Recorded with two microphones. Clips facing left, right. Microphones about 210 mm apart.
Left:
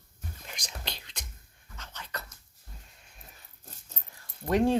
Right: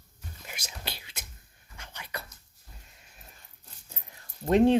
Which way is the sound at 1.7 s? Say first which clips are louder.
Right 1 dB; 10° right (ahead or behind).